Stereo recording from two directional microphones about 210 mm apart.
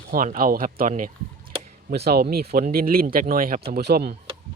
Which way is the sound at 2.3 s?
50° right (ahead or behind).